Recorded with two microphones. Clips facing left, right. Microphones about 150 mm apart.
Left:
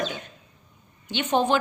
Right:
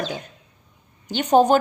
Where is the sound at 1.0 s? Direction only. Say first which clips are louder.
Right 7 dB; 40° right (ahead or behind).